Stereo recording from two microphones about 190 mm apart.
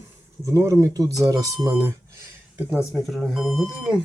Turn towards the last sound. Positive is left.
turn(degrees=-5)  # may be behind; listen again after turning